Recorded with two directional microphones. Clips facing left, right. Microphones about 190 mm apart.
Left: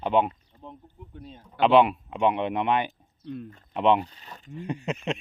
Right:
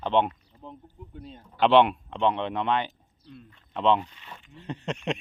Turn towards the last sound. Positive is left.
turn(degrees=5)  # may be behind; listen again after turning